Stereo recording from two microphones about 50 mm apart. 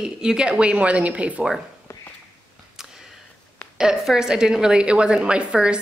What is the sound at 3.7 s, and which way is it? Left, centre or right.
A woman's voice, centre.